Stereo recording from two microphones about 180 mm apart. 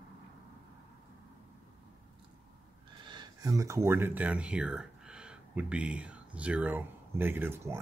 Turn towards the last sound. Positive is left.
turn(degrees=-10)  # may be behind; listen again after turning